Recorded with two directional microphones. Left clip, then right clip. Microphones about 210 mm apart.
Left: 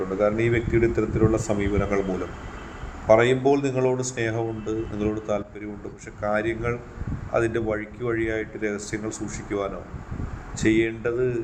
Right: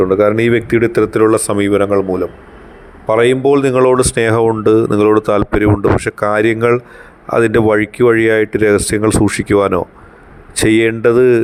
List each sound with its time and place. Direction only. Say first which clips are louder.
0.1 s speech: right 11 dB; 55° right (ahead or behind)